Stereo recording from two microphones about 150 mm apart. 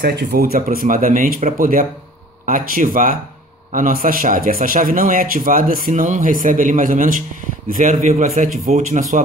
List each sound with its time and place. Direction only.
0.0 s a man's voice: 90° right; by 9.2 s 60° right (ahead or behind)